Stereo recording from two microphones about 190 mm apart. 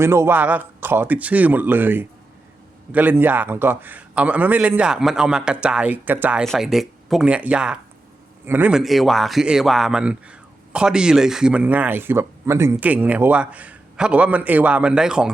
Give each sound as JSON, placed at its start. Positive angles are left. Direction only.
{"t": 0.0, "sound": "a man's voice", "side_deg": -15}